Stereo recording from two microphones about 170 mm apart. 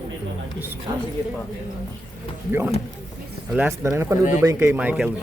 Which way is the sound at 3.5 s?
10° right (ahead or behind).